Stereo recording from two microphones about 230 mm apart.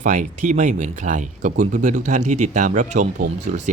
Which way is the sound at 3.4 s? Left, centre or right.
Right.